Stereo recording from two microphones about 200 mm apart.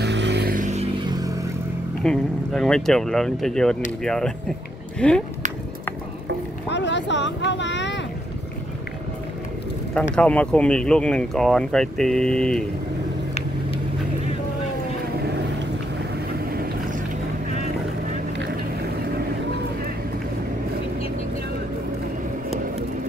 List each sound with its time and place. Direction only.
0.0 s vehicle: 60° right (ahead or behind); by 1.0 s 35° right (ahead or behind)
1.0 s vehicle: 20° right (ahead or behind)
2.0 s speech: 5° left (ahead or behind)
6.7 s boat: 60° left (ahead or behind)
10.1 s speech: 5° left (ahead or behind)